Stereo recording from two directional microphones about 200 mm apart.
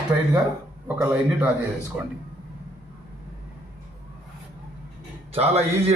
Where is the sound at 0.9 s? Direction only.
10° right (ahead or behind).